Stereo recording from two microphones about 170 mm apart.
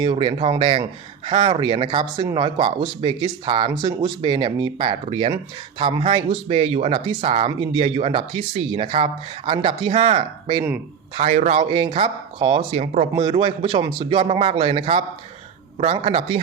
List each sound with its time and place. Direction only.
0.0 s a man's voice: 30° right (ahead or behind)
11.6 s speech: 30° right (ahead or behind)
13.1 s speech: 30° right (ahead or behind)